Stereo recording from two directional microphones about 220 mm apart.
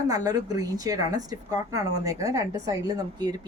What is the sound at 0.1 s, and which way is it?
Speech, 15° right (ahead or behind).